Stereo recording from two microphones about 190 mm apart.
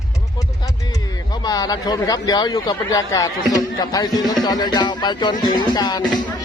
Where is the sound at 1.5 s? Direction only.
20° left (ahead or behind).